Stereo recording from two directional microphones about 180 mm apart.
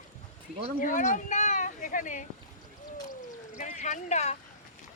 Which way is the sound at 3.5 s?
45° left (ahead or behind).